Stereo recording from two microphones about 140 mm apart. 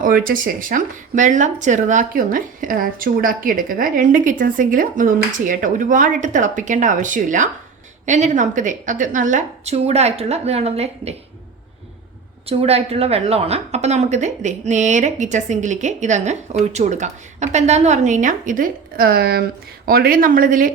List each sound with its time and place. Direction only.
0.0 s a woman's voice: 90° right; by 11.1 s 45° right (ahead or behind)
12.5 s speech: 45° right (ahead or behind); by 20.7 s 80° right